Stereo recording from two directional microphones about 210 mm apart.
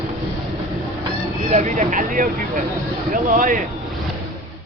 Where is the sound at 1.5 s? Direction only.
35° right (ahead or behind).